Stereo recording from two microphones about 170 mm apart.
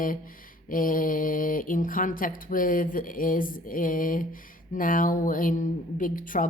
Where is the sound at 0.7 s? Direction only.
55° left (ahead or behind).